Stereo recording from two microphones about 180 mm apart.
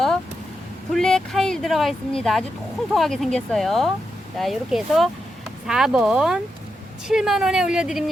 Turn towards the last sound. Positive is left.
turn(degrees=-5)  # may be behind; listen again after turning